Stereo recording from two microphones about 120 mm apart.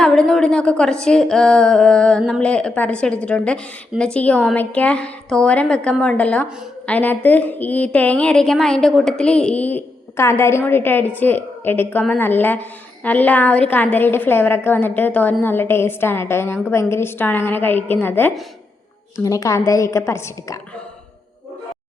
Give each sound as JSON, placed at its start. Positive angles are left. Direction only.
{"t": 0.0, "sound": "a woman's voice", "side_deg": 5}
{"t": 19.2, "sound": "a woman's voice", "side_deg": 30}